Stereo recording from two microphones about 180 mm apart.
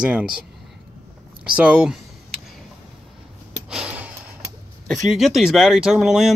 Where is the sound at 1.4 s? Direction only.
5° right (ahead or behind).